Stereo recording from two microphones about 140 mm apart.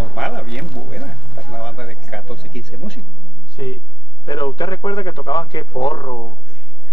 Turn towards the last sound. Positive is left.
turn(degrees=35)  # may be behind; listen again after turning